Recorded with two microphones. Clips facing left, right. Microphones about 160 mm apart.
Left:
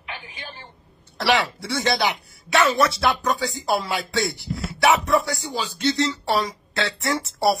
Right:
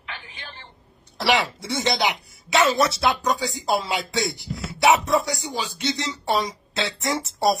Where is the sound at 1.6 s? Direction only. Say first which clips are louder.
Left 1 dB; 20° right (ahead or behind).